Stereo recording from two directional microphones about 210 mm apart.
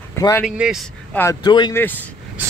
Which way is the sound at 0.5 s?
5° right (ahead or behind).